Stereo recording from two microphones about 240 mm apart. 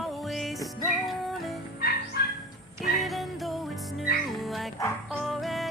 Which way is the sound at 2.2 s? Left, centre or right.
Left.